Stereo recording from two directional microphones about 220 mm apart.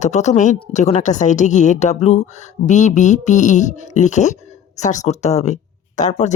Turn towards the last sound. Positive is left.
turn(degrees=35)  # may be behind; listen again after turning